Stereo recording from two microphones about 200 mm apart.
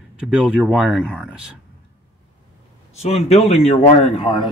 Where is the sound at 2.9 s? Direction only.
30° left (ahead or behind).